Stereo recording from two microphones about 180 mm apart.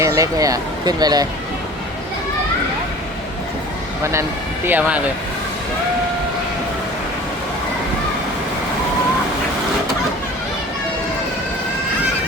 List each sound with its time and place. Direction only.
0.0 s speech: 20° right (ahead or behind)
4.1 s speech: 15° right (ahead or behind)